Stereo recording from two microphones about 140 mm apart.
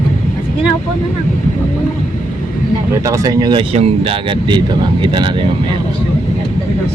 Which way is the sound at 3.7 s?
45° right (ahead or behind).